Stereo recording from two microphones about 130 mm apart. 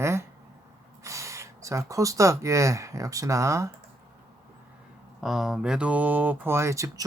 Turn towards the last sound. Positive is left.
turn(degrees=-25)  # may be behind; listen again after turning